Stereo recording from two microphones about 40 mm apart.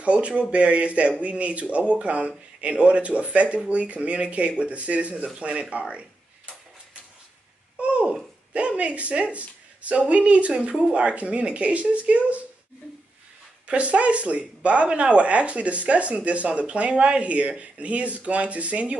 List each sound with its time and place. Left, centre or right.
0.0 s speech: right
7.8 s babbling: right
8.5 s speech: right
13.7 s speech: right